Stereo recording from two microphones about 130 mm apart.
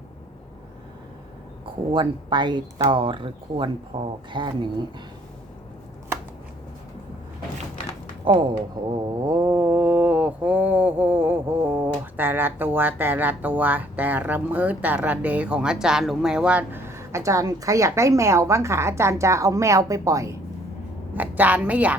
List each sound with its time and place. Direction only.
1.9 s speech: 35° right (ahead or behind)
8.2 s speech: 40° right (ahead or behind)
9.2 s mantra: 25° right (ahead or behind)
21.2 s a woman's voice: 15° right (ahead or behind)